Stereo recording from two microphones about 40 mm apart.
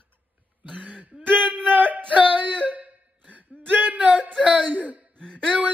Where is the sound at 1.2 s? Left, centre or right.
Right.